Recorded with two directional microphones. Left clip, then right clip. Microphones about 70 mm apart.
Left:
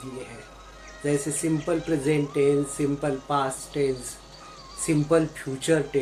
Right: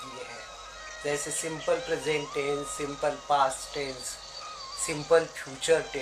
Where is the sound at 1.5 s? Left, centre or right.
Centre.